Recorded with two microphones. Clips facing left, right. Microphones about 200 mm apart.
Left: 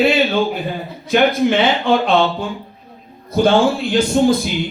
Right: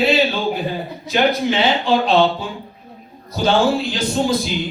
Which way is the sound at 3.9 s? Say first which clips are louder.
Left 5 dB; 55° left (ahead or behind).